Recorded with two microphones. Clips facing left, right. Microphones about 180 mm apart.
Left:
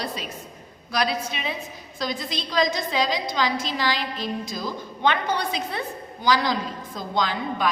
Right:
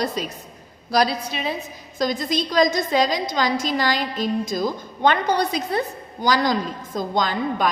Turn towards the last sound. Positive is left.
turn(degrees=-45)  # may be behind; listen again after turning